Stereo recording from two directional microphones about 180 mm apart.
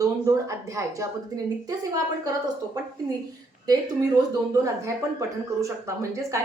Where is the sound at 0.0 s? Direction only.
20° right (ahead or behind).